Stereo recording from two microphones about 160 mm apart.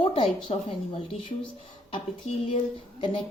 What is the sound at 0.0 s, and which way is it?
A woman's voice, 35° left (ahead or behind).